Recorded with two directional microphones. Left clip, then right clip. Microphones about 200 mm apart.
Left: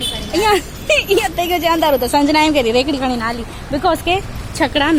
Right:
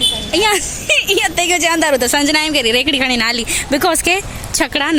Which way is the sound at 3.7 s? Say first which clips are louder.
Even; 50° right (ahead or behind).